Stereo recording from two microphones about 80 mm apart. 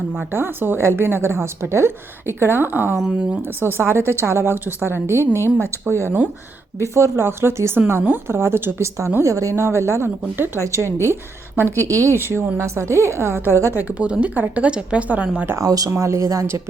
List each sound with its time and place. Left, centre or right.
0.3 s a woman's voice: right
10.6 s a woman's voice: right
11.8 s a woman's voice: right
13.7 s speech: centre
15.5 s speech: right
15.9 s a woman's voice: right